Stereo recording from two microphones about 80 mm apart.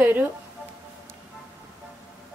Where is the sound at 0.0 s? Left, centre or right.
Right.